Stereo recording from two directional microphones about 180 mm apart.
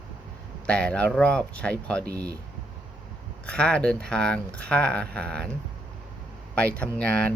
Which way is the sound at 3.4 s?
5° left (ahead or behind).